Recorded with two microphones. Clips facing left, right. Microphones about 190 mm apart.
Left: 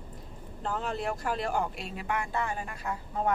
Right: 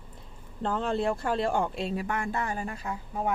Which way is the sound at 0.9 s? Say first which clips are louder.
Right 6 dB; 30° right (ahead or behind).